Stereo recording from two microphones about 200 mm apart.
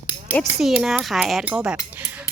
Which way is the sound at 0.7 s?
5° right (ahead or behind).